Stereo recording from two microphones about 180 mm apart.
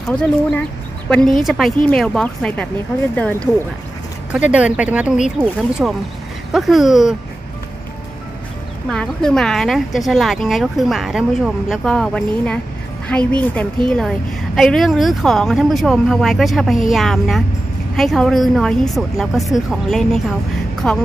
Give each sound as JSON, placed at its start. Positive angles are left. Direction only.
{"t": 0.1, "sound": "a woman's voice", "side_deg": 5}
{"t": 4.3, "sound": "a woman's voice", "side_deg": -5}
{"t": 8.8, "sound": "a woman's voice", "side_deg": 5}